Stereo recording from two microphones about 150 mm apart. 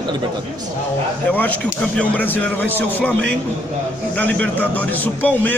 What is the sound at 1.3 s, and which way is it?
A man's voice, 10° left (ahead or behind).